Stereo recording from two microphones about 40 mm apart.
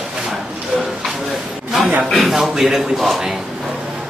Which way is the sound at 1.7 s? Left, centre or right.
Centre.